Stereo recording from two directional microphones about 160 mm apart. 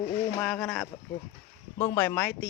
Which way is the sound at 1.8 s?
20° left (ahead or behind).